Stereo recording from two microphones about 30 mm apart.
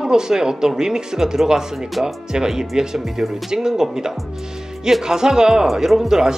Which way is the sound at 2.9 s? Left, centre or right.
Centre.